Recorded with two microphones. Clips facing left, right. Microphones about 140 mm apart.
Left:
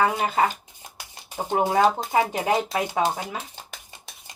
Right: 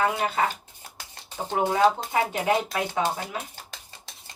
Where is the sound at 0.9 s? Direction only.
15° left (ahead or behind).